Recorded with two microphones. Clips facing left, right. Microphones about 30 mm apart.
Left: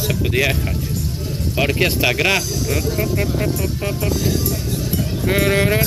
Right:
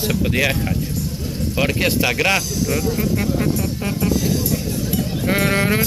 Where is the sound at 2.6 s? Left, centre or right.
Left.